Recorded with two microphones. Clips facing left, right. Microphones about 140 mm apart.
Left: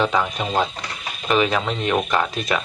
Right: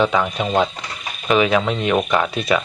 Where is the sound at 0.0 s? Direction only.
Centre (ahead or behind).